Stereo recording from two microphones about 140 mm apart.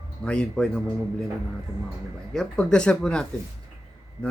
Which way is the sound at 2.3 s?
5° left (ahead or behind).